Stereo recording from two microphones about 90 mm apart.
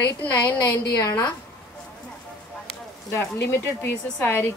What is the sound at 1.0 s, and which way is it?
Speech, 45° left (ahead or behind).